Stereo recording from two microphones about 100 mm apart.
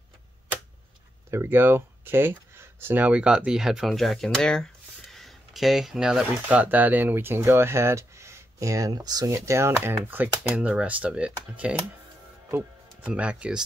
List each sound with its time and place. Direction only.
1.3 s speech: 25° right (ahead or behind)
9.9 s speech: 15° right (ahead or behind)
13.0 s speech: 10° right (ahead or behind)